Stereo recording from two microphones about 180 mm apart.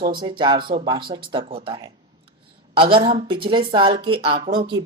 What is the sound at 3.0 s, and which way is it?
Speech, 30° right (ahead or behind).